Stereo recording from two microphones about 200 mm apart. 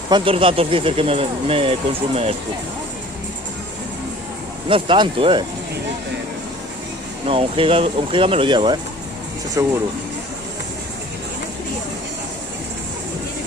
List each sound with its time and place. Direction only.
0.1 s speech: 25° right (ahead or behind)
4.7 s speech: 25° right (ahead or behind)
7.3 s speech: 25° right (ahead or behind)